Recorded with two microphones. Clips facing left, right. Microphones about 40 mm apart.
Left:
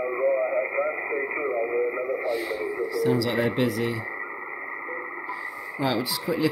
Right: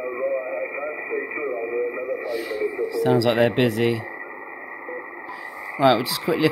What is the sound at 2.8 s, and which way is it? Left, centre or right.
Speech, right.